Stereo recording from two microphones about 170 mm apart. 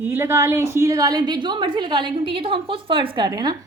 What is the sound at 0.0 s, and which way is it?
A woman's voice, 15° right (ahead or behind).